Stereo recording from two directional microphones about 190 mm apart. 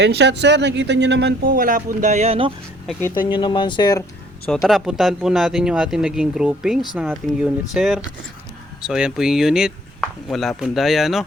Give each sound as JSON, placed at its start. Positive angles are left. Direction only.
{"t": 0.0, "sound": "speech", "side_deg": -65}
{"t": 1.5, "sound": "speech", "side_deg": -45}
{"t": 3.2, "sound": "speech", "side_deg": 25}
{"t": 4.4, "sound": "speech", "side_deg": 0}